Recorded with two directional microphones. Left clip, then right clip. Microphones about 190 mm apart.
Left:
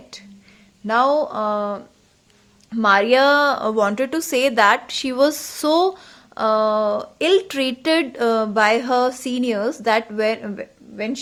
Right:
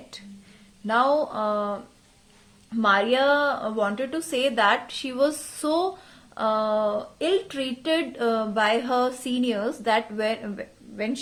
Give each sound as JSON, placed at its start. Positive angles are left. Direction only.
{"t": 0.1, "sound": "a woman's voice", "side_deg": 25}